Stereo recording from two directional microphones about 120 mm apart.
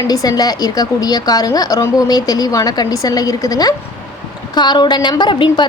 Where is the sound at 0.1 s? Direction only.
30° left (ahead or behind).